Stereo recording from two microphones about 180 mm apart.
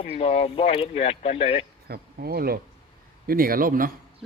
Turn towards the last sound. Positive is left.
turn(degrees=-50)  # may be behind; listen again after turning